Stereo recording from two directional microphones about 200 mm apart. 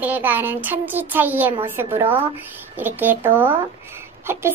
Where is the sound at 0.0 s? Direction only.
10° right (ahead or behind).